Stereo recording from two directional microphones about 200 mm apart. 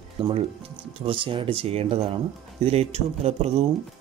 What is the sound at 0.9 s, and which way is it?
Speech, 25° right (ahead or behind).